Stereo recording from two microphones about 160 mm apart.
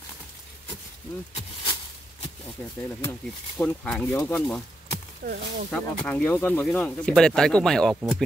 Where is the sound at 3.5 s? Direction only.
10° left (ahead or behind).